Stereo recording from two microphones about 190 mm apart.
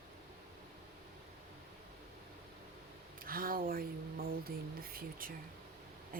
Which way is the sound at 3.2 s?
50° right (ahead or behind).